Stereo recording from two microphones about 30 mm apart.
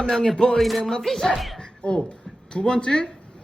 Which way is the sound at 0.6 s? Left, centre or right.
Centre.